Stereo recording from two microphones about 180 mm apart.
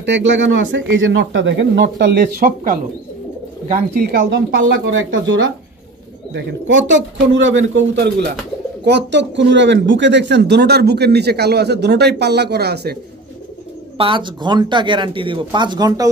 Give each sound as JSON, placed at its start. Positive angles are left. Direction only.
{"t": 0.0, "sound": "speech", "side_deg": -90}
{"t": 4.6, "sound": "speech", "side_deg": -90}
{"t": 13.9, "sound": "speech", "side_deg": -30}